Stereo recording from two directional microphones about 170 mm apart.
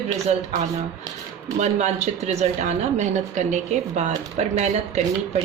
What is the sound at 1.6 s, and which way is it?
A woman's voice, 45° right (ahead or behind).